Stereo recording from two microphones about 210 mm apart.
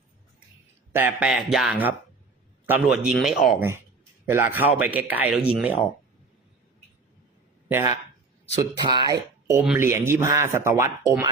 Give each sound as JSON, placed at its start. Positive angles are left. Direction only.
{"t": 0.9, "sound": "speech", "side_deg": -5}
{"t": 7.7, "sound": "speech", "side_deg": -10}